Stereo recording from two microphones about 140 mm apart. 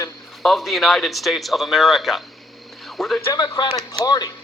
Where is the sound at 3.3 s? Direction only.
30° left (ahead or behind).